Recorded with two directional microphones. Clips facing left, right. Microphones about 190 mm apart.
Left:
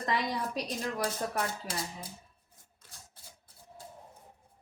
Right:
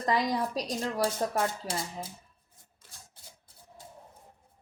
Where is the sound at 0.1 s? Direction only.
35° right (ahead or behind).